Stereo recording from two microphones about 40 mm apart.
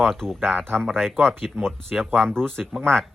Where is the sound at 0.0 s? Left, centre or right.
Centre.